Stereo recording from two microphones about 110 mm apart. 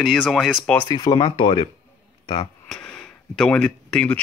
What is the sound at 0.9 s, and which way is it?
Speech, 40° left (ahead or behind).